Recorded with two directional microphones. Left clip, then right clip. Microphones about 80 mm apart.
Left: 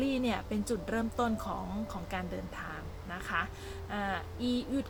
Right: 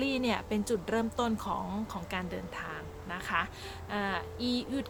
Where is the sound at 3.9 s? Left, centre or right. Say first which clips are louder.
Right 2 dB; right.